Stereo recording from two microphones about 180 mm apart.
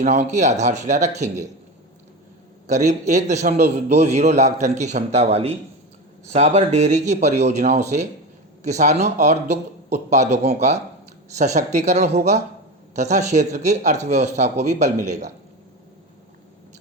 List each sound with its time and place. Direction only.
0.0 s speech: 40° right (ahead or behind)
2.6 s speech: 40° right (ahead or behind)